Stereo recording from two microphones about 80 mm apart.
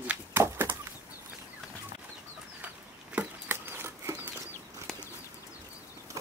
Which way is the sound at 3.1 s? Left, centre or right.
Right.